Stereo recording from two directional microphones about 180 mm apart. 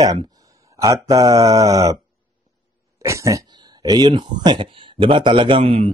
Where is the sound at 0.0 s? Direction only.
20° right (ahead or behind).